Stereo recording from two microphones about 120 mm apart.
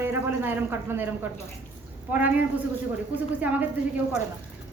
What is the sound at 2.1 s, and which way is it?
Speech, 15° right (ahead or behind).